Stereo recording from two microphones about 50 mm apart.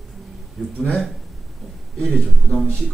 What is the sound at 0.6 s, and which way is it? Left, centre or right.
Speech, centre.